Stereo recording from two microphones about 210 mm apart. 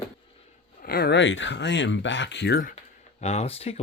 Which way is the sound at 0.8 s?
45° left (ahead or behind).